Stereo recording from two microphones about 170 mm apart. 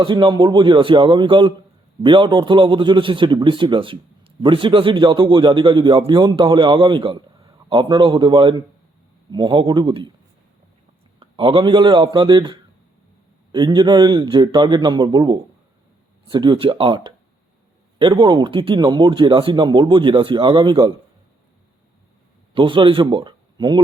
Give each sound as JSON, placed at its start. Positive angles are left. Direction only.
{"t": 0.0, "sound": "a man's voice", "side_deg": -30}
{"t": 11.2, "sound": "a man's voice", "side_deg": -30}
{"t": 22.5, "sound": "speech", "side_deg": -30}